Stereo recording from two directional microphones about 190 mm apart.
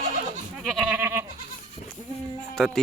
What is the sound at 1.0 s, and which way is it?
Goat, 15° right (ahead or behind).